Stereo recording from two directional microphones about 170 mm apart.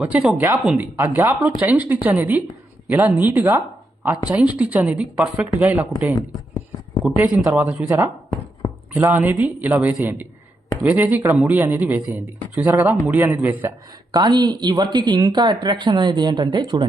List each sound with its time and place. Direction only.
0.0 s a woman's voice: 5° right (ahead or behind)
7.2 s speech: 15° right (ahead or behind)
14.1 s speech: 25° right (ahead or behind)